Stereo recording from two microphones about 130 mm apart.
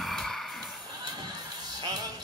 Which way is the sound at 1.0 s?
30° right (ahead or behind).